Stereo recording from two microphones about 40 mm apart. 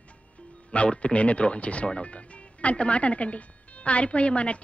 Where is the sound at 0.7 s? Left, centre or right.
Left.